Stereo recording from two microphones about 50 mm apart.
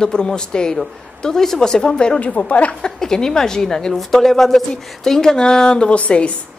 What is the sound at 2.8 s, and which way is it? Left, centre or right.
A woman's voice, centre.